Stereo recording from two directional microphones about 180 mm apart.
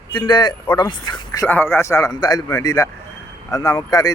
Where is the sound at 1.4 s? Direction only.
10° left (ahead or behind).